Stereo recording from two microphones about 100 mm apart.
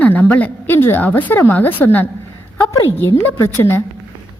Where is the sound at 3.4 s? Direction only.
25° left (ahead or behind).